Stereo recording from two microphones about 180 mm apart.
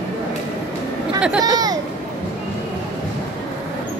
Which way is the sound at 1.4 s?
20° right (ahead or behind).